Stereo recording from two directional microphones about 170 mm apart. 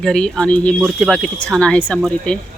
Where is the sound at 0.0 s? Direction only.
5° left (ahead or behind).